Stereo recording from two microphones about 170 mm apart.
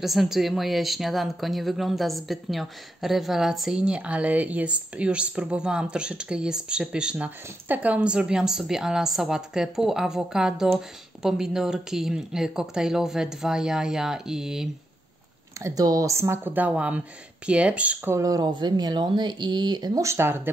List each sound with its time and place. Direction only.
0.0 s speech: centre (ahead or behind)
15.6 s speech: 20° right (ahead or behind)